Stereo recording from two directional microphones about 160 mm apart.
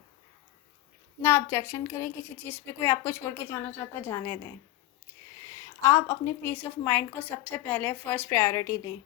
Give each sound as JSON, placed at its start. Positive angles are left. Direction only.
{"t": 1.2, "sound": "a woman's voice", "side_deg": 15}
{"t": 5.8, "sound": "a woman's voice", "side_deg": 20}